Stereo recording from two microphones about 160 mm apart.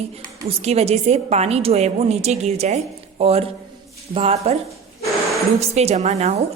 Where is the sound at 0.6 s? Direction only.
40° right (ahead or behind).